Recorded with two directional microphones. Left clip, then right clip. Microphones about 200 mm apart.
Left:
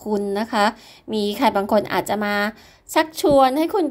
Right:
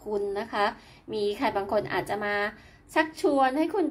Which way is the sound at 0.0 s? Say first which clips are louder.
Left 6 dB; 45° left (ahead or behind).